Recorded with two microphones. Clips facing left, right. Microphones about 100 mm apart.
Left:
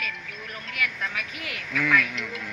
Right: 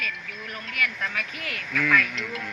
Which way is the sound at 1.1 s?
15° left (ahead or behind).